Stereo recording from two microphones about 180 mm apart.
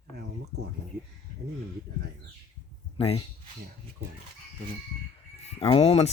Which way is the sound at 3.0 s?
35° left (ahead or behind).